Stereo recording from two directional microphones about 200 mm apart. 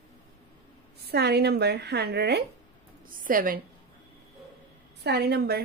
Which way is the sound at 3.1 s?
45° right (ahead or behind).